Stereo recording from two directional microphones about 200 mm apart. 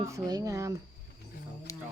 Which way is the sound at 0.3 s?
15° right (ahead or behind).